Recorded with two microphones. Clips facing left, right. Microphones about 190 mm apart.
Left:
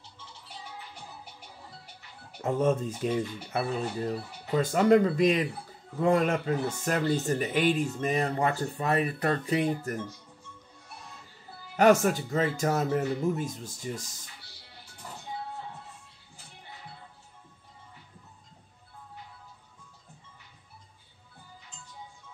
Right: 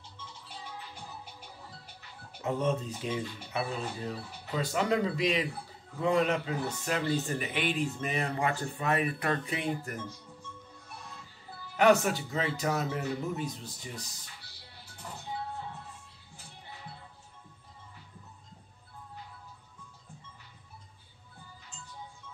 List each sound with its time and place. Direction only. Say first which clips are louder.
2.4 s speech: left 4 dB; 45° left (ahead or behind)
11.7 s speech: left 3 dB; 45° left (ahead or behind)